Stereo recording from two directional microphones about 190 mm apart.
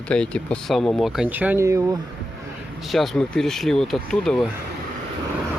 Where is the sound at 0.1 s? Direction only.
5° left (ahead or behind); by 2.0 s 15° right (ahead or behind).